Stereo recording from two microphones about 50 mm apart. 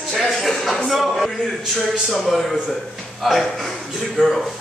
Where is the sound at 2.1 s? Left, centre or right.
Centre.